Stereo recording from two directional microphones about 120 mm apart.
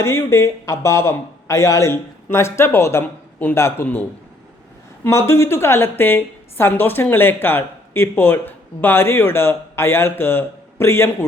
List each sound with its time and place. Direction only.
0.0 s a woman's voice: 20° left (ahead or behind)
5.0 s a woman's voice: 20° left (ahead or behind)